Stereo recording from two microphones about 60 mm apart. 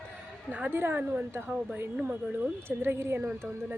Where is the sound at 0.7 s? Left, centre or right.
Right.